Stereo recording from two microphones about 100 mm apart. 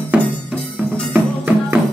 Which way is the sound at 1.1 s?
20° right (ahead or behind).